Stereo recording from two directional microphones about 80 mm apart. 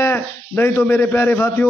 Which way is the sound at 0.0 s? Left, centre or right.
Left.